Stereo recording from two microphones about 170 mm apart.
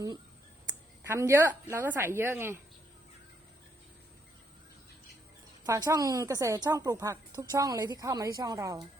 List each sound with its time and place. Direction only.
1.0 s a woman's voice: 15° right (ahead or behind)
5.6 s a woman's voice: 20° right (ahead or behind)